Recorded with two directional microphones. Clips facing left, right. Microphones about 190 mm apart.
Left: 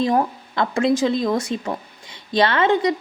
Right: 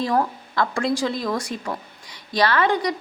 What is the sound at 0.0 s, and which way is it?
A woman's voice, 20° left (ahead or behind).